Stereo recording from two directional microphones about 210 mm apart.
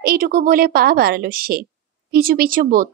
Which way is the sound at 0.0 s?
45° right (ahead or behind).